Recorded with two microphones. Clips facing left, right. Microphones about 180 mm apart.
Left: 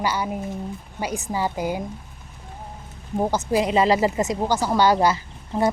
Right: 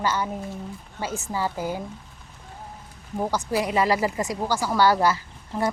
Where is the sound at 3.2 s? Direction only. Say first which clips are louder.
Left 4 dB; 20° left (ahead or behind).